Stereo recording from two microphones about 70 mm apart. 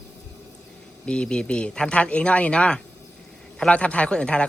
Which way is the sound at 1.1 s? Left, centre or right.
Centre.